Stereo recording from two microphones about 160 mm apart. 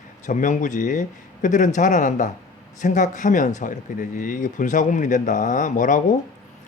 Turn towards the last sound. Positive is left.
turn(degrees=55)  # may be behind; listen again after turning